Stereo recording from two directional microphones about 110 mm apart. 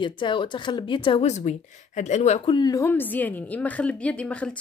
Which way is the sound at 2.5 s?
35° left (ahead or behind).